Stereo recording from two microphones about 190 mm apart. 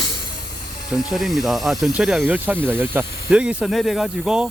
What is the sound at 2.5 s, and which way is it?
Speech, 5° left (ahead or behind).